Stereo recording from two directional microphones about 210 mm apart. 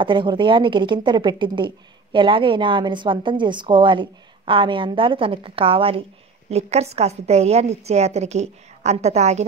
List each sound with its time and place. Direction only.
0.0 s a woman's voice: 25° right (ahead or behind)